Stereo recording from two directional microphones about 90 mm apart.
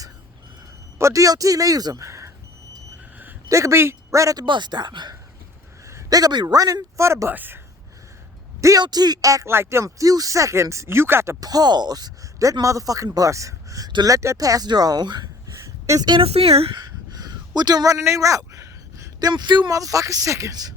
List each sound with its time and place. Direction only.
0.9 s a man's voice: 35° right (ahead or behind)
3.5 s speech: 35° right (ahead or behind)
4.4 s speech: 60° right (ahead or behind)
5.8 s a man's voice: 35° right (ahead or behind)
8.8 s speech: 50° right (ahead or behind); by 11.3 s 30° right (ahead or behind)
11.3 s speech: 45° right (ahead or behind)
16.0 s speech: 75° right (ahead or behind)
16.7 s a sound: 50° right (ahead or behind)
19.3 s speech: 60° right (ahead or behind)
19.7 s speech: 40° right (ahead or behind)